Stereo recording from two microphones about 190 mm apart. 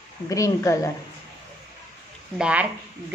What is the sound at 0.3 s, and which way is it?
Speech, 15° left (ahead or behind).